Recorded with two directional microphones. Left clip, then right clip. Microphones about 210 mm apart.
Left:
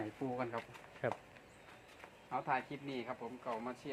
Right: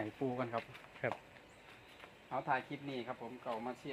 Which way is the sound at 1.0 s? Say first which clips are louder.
Even; 10° left (ahead or behind).